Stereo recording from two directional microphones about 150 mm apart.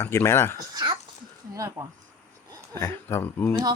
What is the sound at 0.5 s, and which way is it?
Speech, 25° right (ahead or behind).